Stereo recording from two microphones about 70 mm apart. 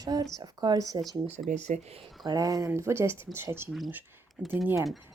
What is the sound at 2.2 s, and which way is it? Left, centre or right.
Speech, right.